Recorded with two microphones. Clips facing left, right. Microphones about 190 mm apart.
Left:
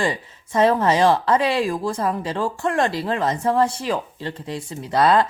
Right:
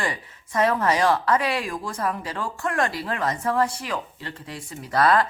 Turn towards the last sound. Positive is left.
turn(degrees=25)  # may be behind; listen again after turning